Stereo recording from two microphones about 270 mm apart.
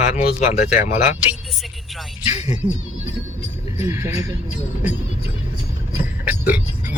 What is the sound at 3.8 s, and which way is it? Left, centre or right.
Speech, centre.